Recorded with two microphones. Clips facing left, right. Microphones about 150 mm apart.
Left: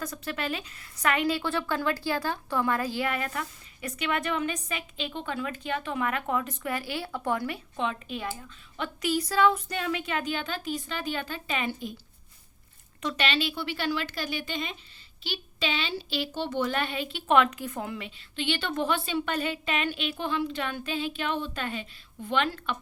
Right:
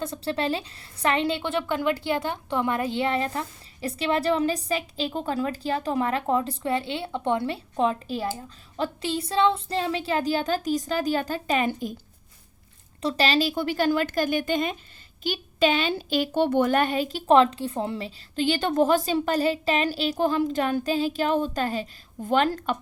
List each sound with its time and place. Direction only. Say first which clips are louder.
0.0 s a woman's voice: right 6 dB; 30° right (ahead or behind); by 11.9 s 45° right (ahead or behind)
13.0 s a woman's voice: right 6 dB; 35° right (ahead or behind)